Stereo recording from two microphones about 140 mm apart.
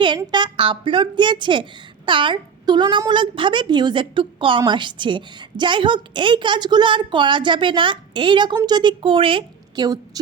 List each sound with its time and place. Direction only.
0.2 s a woman's voice: 30° right (ahead or behind)